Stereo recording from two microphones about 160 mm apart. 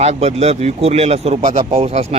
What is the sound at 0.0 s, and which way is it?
Speech, 45° right (ahead or behind).